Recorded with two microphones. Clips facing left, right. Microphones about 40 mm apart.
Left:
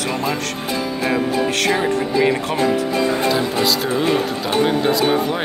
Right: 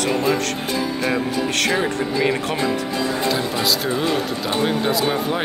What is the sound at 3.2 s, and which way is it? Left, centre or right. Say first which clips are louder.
Speech: left 3 dB; centre.